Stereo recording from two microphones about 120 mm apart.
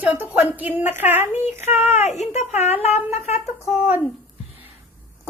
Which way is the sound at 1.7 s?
65° left (ahead or behind).